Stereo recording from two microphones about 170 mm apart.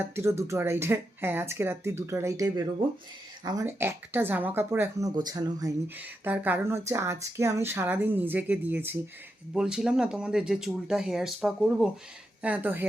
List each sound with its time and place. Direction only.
0.0 s speech: 15° right (ahead or behind)
6.0 s speech: 10° right (ahead or behind)